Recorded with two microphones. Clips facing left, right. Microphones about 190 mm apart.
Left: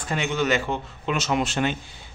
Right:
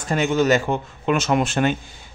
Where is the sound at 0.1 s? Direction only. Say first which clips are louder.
Right 6 dB; 45° right (ahead or behind).